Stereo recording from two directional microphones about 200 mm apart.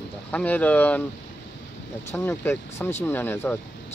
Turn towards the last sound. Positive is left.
turn(degrees=10)  # may be behind; listen again after turning